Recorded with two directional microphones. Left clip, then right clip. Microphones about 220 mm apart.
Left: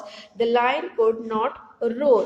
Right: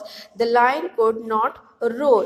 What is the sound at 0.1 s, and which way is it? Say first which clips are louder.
A woman's voice: right 2 dB; 20° right (ahead or behind).